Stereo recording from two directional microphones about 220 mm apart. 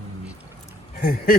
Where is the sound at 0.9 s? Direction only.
40° left (ahead or behind).